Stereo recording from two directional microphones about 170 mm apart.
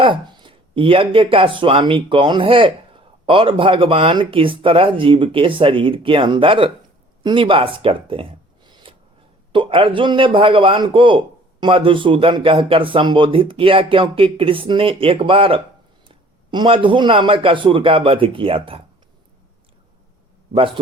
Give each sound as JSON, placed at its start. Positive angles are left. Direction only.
{"t": 0.0, "sound": "speech", "side_deg": -25}
{"t": 7.2, "sound": "a sound", "side_deg": -30}
{"t": 9.5, "sound": "speech", "side_deg": -30}
{"t": 20.5, "sound": "speech", "side_deg": -30}